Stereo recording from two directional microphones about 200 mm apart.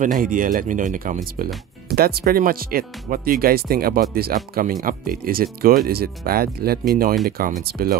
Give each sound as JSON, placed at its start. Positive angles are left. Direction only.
{"t": 0.0, "sound": "speech", "side_deg": -40}